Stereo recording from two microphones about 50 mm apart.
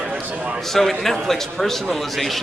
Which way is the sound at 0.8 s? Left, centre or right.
Centre.